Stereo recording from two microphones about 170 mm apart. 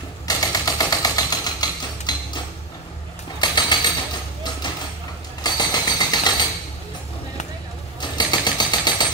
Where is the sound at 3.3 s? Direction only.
25° left (ahead or behind).